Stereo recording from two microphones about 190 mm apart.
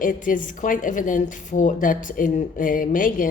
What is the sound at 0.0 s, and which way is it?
Speech, 45° left (ahead or behind).